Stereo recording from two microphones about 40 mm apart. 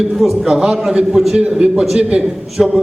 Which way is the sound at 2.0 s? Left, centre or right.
Right.